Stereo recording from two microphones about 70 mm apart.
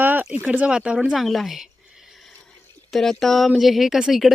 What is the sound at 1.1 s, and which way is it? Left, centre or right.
Speech, centre.